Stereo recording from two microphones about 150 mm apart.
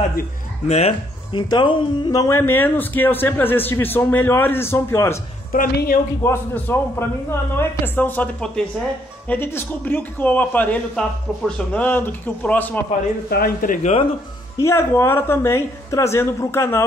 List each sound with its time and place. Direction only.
0.7 s speech: 45° left (ahead or behind)
1.3 s speech: 30° left (ahead or behind)
5.5 s a woman's voice: 70° left (ahead or behind)
6.2 s speech: 15° left (ahead or behind)
13.3 s a man's voice: 80° left
14.6 s speech: 20° left (ahead or behind)